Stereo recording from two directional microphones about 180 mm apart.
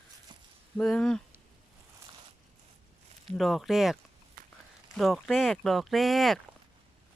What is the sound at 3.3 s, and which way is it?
Speech, centre (ahead or behind).